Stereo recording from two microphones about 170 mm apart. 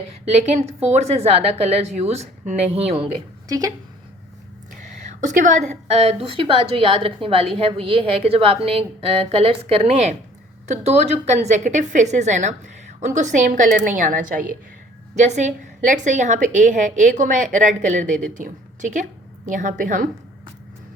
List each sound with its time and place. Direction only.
0.3 s a woman's voice: 40° right (ahead or behind)
4.8 s a woman's voice: 45° right (ahead or behind)